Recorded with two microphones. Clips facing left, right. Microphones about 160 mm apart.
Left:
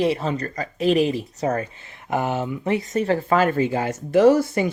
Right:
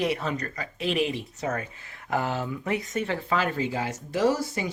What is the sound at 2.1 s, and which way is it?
Speech, 20° left (ahead or behind).